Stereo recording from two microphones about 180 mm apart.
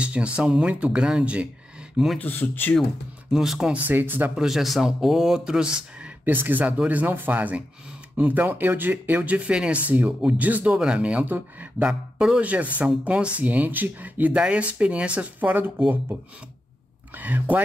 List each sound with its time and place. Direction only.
0.0 s speech: 5° right (ahead or behind)
2.1 s speech: 10° left (ahead or behind)
3.3 s speech: centre (ahead or behind)